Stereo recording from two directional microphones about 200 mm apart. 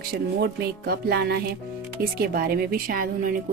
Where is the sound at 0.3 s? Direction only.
55° right (ahead or behind).